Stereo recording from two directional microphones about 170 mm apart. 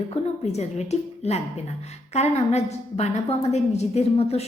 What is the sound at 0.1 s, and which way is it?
A woman's voice, 40° left (ahead or behind).